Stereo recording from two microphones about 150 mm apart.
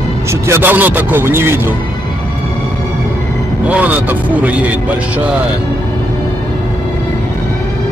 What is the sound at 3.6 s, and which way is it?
Speech, 10° right (ahead or behind).